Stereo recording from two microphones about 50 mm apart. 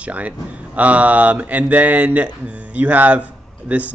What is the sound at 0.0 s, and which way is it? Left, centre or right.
Speech, right.